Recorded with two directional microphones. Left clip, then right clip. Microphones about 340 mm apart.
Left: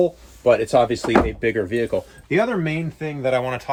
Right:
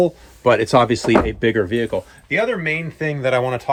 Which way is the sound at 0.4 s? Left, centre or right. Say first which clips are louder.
Right 2 dB; right.